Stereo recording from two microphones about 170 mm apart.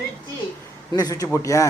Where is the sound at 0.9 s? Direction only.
20° left (ahead or behind).